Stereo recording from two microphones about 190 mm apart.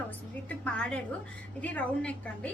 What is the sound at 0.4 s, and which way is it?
A woman's voice, 5° left (ahead or behind).